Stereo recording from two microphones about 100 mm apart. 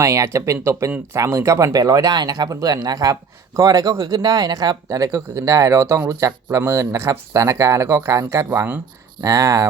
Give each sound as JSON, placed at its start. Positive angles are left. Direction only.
{"t": 0.0, "sound": "speech", "side_deg": -30}
{"t": 9.2, "sound": "speech", "side_deg": -35}